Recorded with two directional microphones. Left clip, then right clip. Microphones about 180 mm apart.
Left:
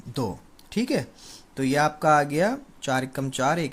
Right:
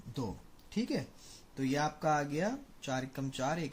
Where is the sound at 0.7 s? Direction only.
35° left (ahead or behind).